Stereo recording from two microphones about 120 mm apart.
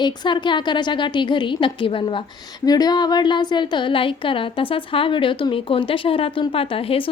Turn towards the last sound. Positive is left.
turn(degrees=50)  # may be behind; listen again after turning